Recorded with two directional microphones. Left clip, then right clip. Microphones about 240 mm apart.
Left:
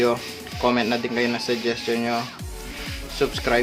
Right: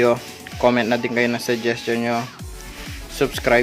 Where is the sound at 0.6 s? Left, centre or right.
Right.